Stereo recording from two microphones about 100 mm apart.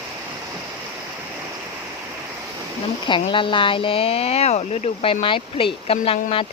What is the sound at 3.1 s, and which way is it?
Speech, 55° left (ahead or behind).